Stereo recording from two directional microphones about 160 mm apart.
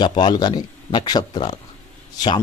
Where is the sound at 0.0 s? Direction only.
25° left (ahead or behind).